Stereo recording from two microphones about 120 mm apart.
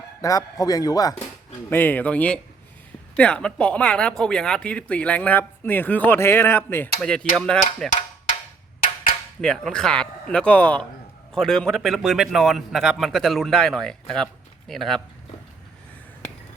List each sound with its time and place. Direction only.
0.2 s a man's voice: 30° left (ahead or behind)
1.7 s speech: 15° left (ahead or behind)
7.0 s speech: 5° left (ahead or behind)
9.4 s a man's voice: 5° left (ahead or behind)